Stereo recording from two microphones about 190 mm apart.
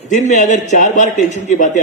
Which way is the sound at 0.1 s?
40° left (ahead or behind).